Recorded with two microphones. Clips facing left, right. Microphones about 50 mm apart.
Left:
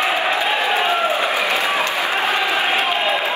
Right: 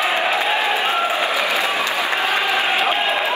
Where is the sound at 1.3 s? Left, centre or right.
Left.